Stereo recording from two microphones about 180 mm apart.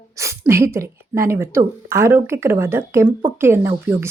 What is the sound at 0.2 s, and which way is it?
A woman's voice, 15° right (ahead or behind).